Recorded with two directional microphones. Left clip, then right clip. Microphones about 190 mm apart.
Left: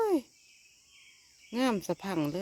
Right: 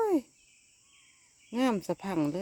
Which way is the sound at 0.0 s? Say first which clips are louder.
Right 1 dB; 5° right (ahead or behind).